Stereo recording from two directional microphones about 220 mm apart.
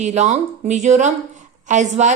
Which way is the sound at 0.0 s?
30° right (ahead or behind).